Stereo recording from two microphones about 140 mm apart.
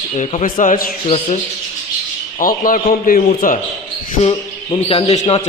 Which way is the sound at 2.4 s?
75° left (ahead or behind).